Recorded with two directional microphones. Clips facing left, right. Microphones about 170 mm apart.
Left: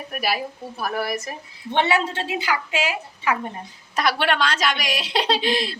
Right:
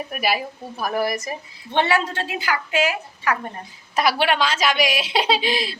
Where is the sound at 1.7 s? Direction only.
20° left (ahead or behind).